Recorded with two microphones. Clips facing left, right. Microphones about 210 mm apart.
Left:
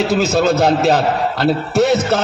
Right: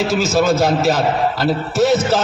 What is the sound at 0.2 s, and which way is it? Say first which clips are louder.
A man's voice: even; 60° left (ahead or behind).